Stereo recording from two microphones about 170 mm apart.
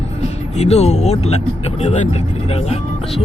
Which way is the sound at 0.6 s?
40° left (ahead or behind).